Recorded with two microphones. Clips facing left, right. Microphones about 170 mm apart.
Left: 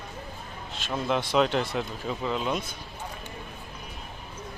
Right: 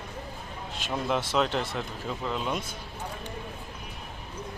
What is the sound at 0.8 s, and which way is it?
Speech, 5° right (ahead or behind).